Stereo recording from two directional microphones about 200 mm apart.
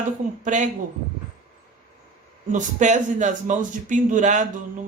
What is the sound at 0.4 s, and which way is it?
Speech, 40° right (ahead or behind).